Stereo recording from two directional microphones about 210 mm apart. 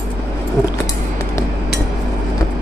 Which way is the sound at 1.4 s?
15° left (ahead or behind).